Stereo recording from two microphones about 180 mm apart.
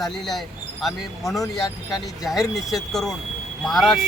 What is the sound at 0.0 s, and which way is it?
Speech, centre (ahead or behind).